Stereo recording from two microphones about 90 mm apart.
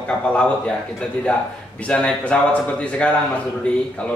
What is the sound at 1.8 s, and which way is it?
A man's voice, 15° left (ahead or behind).